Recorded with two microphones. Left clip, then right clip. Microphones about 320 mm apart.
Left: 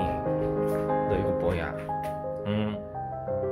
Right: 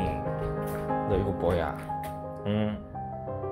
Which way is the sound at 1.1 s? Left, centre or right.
Centre.